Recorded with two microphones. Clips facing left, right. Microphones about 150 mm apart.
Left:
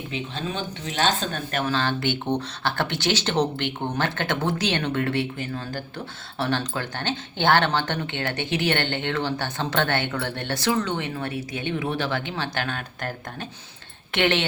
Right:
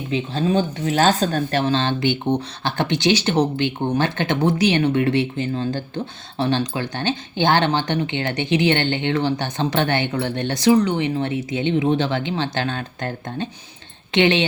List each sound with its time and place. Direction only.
0.1 s speech: 35° right (ahead or behind); by 14.4 s 20° right (ahead or behind)